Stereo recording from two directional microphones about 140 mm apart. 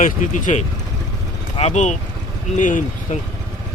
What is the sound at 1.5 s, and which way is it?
Speech, 50° left (ahead or behind).